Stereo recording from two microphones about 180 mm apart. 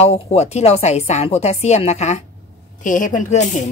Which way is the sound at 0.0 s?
35° left (ahead or behind).